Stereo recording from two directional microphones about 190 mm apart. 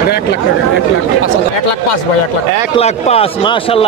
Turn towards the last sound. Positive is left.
turn(degrees=30)  # may be behind; listen again after turning